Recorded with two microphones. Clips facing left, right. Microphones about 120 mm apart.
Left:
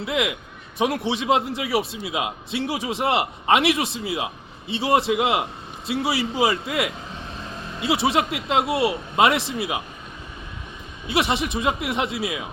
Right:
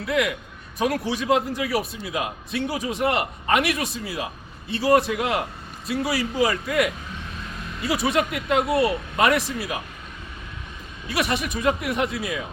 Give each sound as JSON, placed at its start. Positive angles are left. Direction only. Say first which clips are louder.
{"t": 0.0, "sound": "speech", "louder": "right 1 dB", "side_deg": 20}
{"t": 11.1, "sound": "speech", "louder": "left 2 dB", "side_deg": 25}